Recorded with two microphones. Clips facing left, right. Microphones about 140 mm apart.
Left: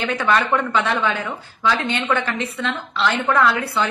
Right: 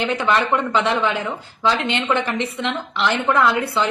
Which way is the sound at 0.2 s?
15° right (ahead or behind).